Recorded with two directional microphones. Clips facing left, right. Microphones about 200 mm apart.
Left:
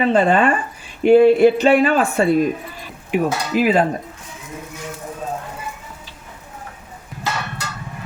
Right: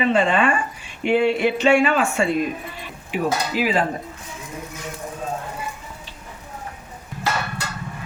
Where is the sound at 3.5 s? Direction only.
50° left (ahead or behind).